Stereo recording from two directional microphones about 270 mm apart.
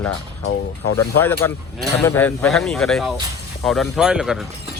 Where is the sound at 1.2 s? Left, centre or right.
Centre.